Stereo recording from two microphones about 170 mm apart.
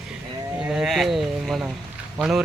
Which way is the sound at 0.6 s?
5° right (ahead or behind).